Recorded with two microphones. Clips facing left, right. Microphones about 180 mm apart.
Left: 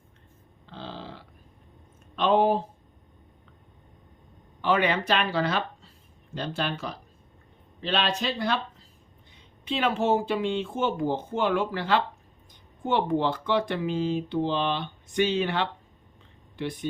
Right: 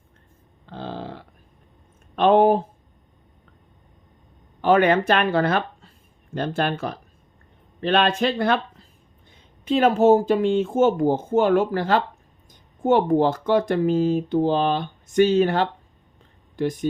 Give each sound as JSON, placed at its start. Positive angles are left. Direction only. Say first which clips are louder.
{"t": 0.7, "sound": "burping", "louder": "right 7 dB", "side_deg": -50}
{"t": 2.1, "sound": "a sound", "louder": "right 6 dB", "side_deg": -55}
{"t": 4.6, "sound": "speech", "louder": "right 7 dB", "side_deg": -50}
{"t": 9.3, "sound": "speech", "louder": "right 9 dB", "side_deg": -45}